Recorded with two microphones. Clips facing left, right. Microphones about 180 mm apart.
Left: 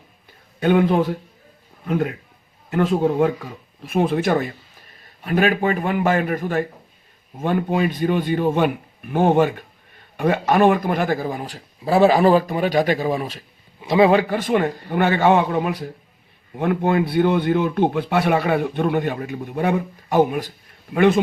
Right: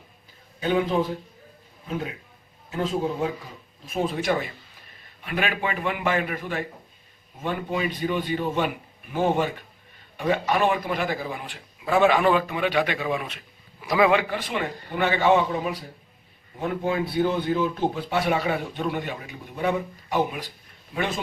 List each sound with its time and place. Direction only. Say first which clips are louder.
0.6 s a man's voice: left 6 dB; 65° left (ahead or behind)